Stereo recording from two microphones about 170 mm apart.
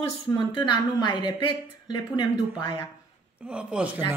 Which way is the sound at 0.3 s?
25° left (ahead or behind).